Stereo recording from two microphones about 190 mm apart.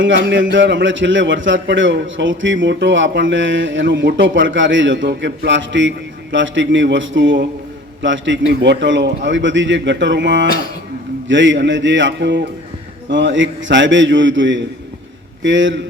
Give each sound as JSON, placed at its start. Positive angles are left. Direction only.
{"t": 0.0, "sound": "a man's voice", "side_deg": -75}